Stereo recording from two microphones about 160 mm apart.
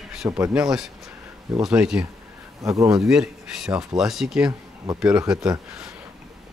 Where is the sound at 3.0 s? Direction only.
5° right (ahead or behind).